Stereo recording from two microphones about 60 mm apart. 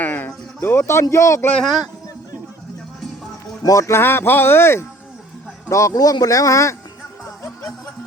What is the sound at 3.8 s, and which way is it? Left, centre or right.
Speech, left.